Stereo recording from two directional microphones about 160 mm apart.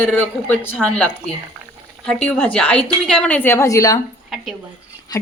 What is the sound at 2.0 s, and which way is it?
A woman's voice, 5° left (ahead or behind).